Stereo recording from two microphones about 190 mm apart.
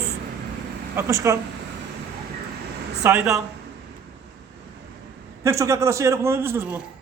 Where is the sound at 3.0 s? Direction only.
5° right (ahead or behind).